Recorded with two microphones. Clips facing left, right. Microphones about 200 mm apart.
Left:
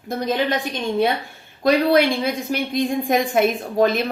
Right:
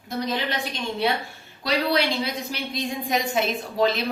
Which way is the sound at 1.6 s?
50° left (ahead or behind).